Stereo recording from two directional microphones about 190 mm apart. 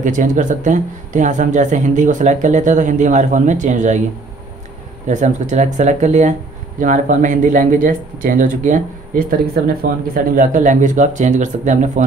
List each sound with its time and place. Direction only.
0.0 s speech: 40° right (ahead or behind)
5.0 s speech: 40° right (ahead or behind)